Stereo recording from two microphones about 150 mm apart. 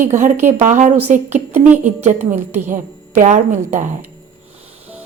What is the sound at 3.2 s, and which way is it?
Speech, 55° right (ahead or behind).